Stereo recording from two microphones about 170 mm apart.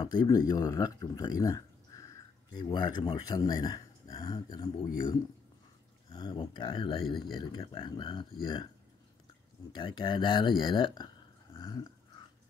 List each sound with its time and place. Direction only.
0.0 s speech: 25° left (ahead or behind)
9.7 s speech: 25° left (ahead or behind)
11.5 s a sound: 25° left (ahead or behind)